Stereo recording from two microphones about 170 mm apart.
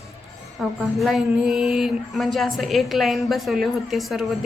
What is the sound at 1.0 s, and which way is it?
A woman's voice, centre (ahead or behind).